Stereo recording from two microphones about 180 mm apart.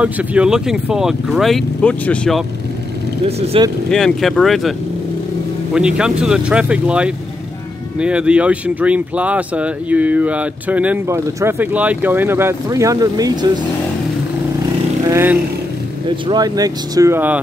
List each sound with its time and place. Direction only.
0.0 s speech: 5° right (ahead or behind)
3.3 s speech: 35° right (ahead or behind)
3.9 s speech: centre (ahead or behind)
5.8 s speech: 5° right (ahead or behind); by 13.5 s 20° right (ahead or behind)
15.0 s speech: 15° right (ahead or behind)